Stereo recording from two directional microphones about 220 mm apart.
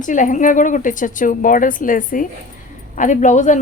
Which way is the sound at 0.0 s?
35° left (ahead or behind).